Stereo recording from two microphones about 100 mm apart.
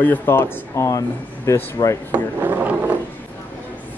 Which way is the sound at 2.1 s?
20° right (ahead or behind).